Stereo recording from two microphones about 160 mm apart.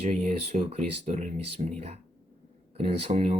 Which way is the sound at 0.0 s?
50° right (ahead or behind).